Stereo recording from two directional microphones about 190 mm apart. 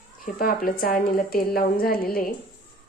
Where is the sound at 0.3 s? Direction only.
50° left (ahead or behind).